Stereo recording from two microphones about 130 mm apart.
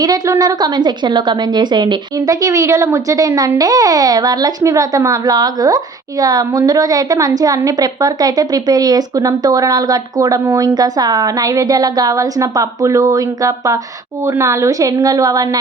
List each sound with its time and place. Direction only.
0.0 s a woman's voice: 30° right (ahead or behind)